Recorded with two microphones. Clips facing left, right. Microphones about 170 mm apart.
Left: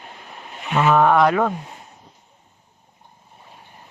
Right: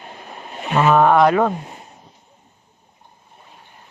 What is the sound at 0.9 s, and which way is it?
Speech, 30° right (ahead or behind).